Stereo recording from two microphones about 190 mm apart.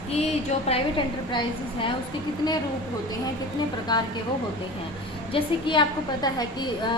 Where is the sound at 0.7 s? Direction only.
25° left (ahead or behind).